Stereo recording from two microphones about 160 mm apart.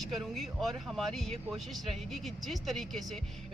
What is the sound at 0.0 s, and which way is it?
Speech, centre (ahead or behind).